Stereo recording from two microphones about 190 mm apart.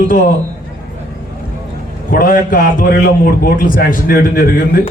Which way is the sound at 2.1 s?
50° left (ahead or behind).